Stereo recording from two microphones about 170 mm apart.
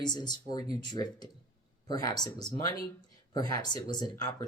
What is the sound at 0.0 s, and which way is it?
Speech, 25° left (ahead or behind).